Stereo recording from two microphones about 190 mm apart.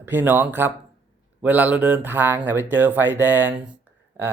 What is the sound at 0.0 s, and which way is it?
Speech, 10° right (ahead or behind).